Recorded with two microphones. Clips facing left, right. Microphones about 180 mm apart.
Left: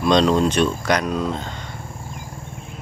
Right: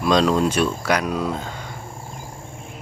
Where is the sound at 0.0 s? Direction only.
5° right (ahead or behind).